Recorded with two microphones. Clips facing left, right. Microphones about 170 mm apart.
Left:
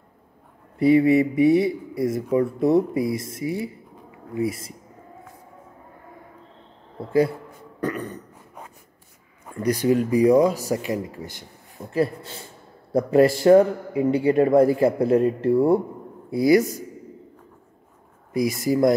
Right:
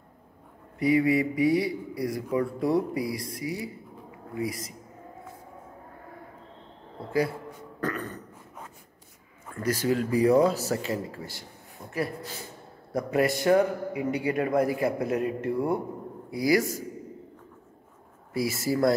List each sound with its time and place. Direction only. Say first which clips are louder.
0.7 s speech: left 6 dB; 30° left (ahead or behind)
7.1 s speech: left 7 dB; 25° left (ahead or behind)
7.8 s dog: left 4 dB; 15° left (ahead or behind)
9.5 s a man's voice: left 6 dB; 15° left (ahead or behind)
18.3 s speech: left 5 dB; 15° left (ahead or behind)